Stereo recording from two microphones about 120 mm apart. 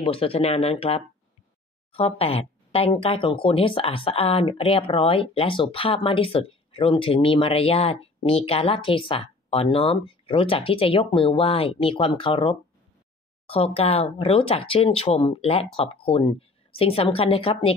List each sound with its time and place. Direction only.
0.0 s speech: 50° left (ahead or behind)